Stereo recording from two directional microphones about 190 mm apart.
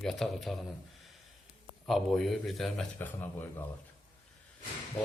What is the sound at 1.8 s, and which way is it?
A man's voice, centre (ahead or behind).